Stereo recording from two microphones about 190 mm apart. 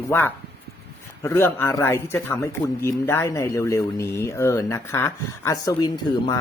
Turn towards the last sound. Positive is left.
turn(degrees=20)  # may be behind; listen again after turning